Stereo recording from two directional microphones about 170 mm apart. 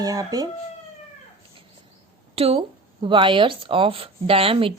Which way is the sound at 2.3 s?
35° right (ahead or behind).